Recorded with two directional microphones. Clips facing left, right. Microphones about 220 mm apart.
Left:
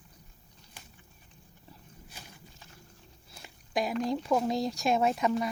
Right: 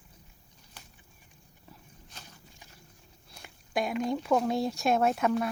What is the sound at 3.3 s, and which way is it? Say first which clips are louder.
Speech: even; centre (ahead or behind).